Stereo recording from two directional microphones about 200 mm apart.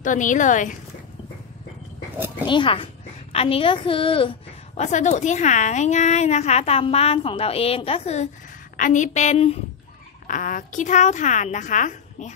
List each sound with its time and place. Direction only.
0.0 s a woman's voice: 40° left (ahead or behind)
2.4 s a woman's voice: 25° left (ahead or behind)